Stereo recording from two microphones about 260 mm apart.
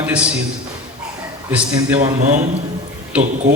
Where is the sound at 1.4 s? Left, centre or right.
Centre.